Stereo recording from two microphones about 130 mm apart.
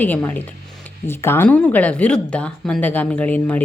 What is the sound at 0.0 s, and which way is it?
Speech, 15° left (ahead or behind).